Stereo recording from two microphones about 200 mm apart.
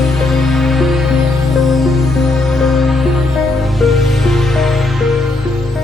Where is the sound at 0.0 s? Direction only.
Centre (ahead or behind).